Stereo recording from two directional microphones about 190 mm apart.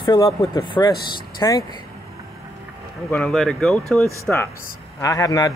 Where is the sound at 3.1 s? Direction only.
5° left (ahead or behind).